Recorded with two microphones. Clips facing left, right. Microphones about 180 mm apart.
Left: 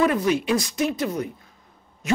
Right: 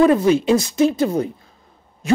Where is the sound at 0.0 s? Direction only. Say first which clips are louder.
Right 7 dB; 30° right (ahead or behind).